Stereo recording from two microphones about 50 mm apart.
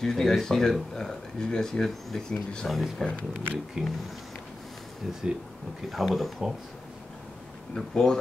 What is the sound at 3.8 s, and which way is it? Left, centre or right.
Speech, centre.